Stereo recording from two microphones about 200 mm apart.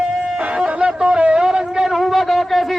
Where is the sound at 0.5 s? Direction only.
5° right (ahead or behind).